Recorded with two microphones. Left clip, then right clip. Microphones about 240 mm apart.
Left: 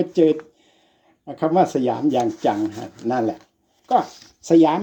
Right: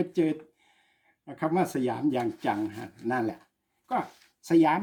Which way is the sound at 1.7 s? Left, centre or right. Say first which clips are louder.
Left 8 dB; centre.